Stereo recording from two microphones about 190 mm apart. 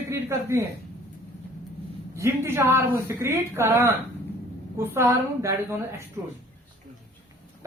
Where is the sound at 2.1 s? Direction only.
15° right (ahead or behind).